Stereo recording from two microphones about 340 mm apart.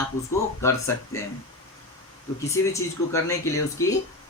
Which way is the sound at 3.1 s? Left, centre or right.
Centre.